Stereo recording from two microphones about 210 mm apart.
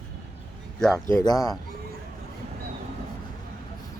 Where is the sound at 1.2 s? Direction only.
15° left (ahead or behind).